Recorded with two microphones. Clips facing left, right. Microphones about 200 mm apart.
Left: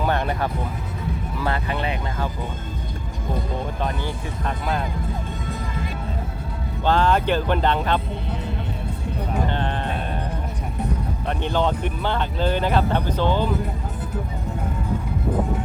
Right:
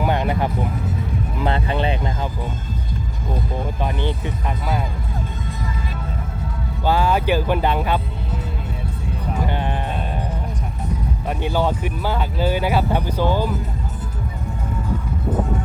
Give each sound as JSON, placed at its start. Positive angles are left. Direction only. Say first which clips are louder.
{"t": 0.0, "sound": "music", "louder": "right 2 dB", "side_deg": -15}
{"t": 6.8, "sound": "speech", "louder": "right 1 dB", "side_deg": -10}
{"t": 9.5, "sound": "music", "louder": "right 1 dB", "side_deg": -10}
{"t": 11.3, "sound": "speech", "louder": "right 1 dB", "side_deg": -10}